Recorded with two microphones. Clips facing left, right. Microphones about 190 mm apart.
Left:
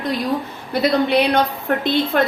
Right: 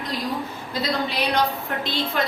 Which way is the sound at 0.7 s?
60° left (ahead or behind).